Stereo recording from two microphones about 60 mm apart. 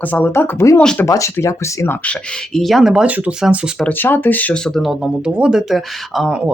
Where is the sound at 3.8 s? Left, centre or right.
Left.